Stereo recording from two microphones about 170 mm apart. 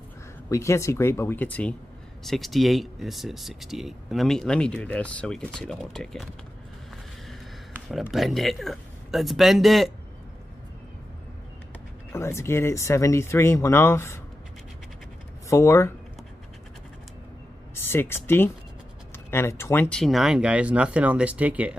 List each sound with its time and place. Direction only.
0.5 s speech: 15° left (ahead or behind)
7.9 s speech: centre (ahead or behind)
12.1 s speech: 15° left (ahead or behind)
15.5 s speech: 15° left (ahead or behind)
17.8 s speech: 15° left (ahead or behind); by 21.7 s 10° right (ahead or behind)